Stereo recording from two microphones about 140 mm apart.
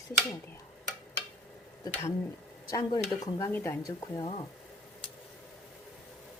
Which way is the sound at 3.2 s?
20° left (ahead or behind).